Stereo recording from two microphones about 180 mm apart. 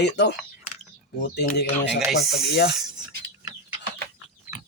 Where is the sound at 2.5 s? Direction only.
70° left (ahead or behind).